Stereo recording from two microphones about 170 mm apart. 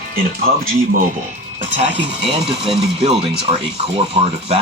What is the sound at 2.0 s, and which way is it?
Speech, 30° right (ahead or behind).